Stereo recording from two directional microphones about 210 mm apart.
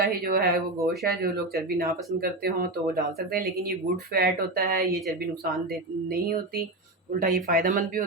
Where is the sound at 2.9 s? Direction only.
45° right (ahead or behind).